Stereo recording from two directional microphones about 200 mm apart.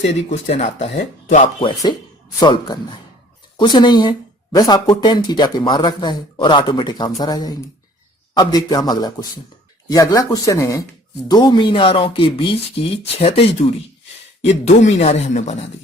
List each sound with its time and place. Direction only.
0.0 s speech: 35° left (ahead or behind)
1.6 s speech: 20° left (ahead or behind)